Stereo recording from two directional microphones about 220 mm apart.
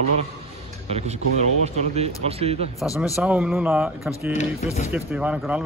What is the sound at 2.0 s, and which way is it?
Speech, 30° right (ahead or behind).